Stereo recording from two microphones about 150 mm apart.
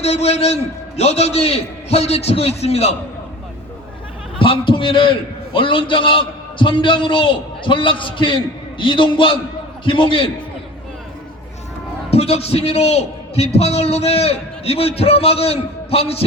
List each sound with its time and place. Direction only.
0.0 s a man's voice: 45° left (ahead or behind)
4.4 s a man's voice: 35° left (ahead or behind)
12.1 s a man's voice: 45° left (ahead or behind)